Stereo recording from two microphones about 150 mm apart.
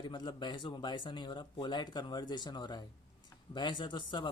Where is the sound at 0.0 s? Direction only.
30° left (ahead or behind).